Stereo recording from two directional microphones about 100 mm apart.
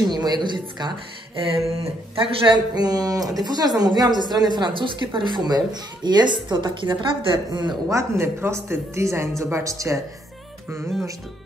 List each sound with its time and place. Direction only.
0.0 s a woman's voice: 40° right (ahead or behind)
2.2 s speech: 50° right (ahead or behind)
7.9 s speech: 25° right (ahead or behind)